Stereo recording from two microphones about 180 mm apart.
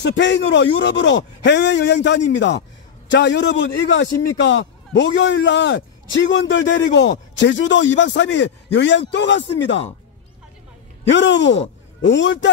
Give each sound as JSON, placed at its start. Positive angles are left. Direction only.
{"t": 0.0, "sound": "a man's voice", "side_deg": 80}
{"t": 11.1, "sound": "a man's voice", "side_deg": 90}